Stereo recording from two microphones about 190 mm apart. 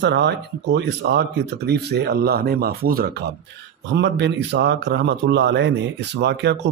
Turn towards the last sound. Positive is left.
turn(degrees=-65)  # may be behind; listen again after turning